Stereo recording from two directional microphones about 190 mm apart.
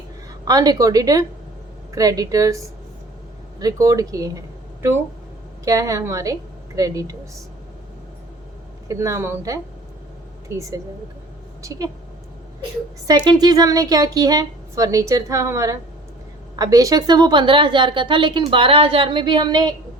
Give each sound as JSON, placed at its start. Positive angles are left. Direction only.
{"t": 0.4, "sound": "a woman's voice", "side_deg": -20}
{"t": 3.6, "sound": "a woman's voice", "side_deg": -15}
{"t": 5.6, "sound": "a woman's voice", "side_deg": -15}
{"t": 8.9, "sound": "a woman's voice", "side_deg": -15}
{"t": 11.6, "sound": "a woman's voice", "side_deg": -20}
{"t": 13.1, "sound": "a woman's voice", "side_deg": -20}